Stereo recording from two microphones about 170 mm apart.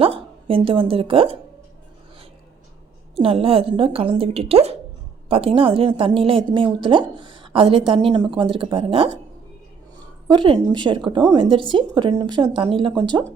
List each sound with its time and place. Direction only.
0.0 s speech: 35° right (ahead or behind)
3.2 s a woman's voice: 35° right (ahead or behind)
10.2 s speech: 25° right (ahead or behind)